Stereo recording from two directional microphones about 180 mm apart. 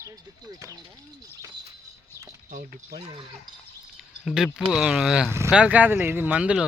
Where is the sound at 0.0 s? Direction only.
20° right (ahead or behind).